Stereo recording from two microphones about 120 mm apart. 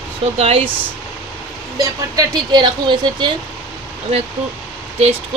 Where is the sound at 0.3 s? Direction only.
55° right (ahead or behind).